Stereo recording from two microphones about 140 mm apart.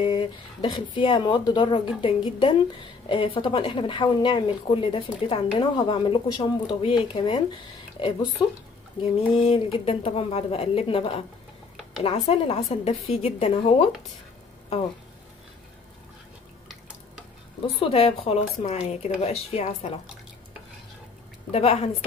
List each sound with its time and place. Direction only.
0.0 s a woman's voice: 35° left (ahead or behind)
9.0 s a woman's voice: 45° left (ahead or behind)
17.7 s a woman's voice: 45° left (ahead or behind)
21.5 s a woman's voice: 50° left (ahead or behind)